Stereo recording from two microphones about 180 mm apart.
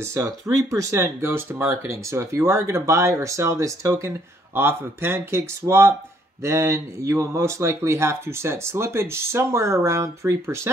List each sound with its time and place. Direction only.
0.0 s speech: 15° right (ahead or behind)